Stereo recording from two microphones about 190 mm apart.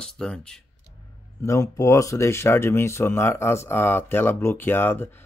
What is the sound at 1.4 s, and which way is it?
Speech, 15° left (ahead or behind).